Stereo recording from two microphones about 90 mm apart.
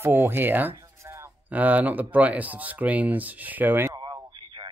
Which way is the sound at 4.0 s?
60° right (ahead or behind).